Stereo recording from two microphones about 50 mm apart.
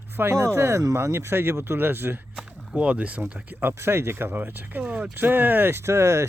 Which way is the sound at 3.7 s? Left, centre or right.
Right.